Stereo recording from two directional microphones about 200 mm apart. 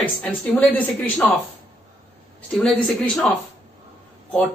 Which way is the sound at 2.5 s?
5° left (ahead or behind).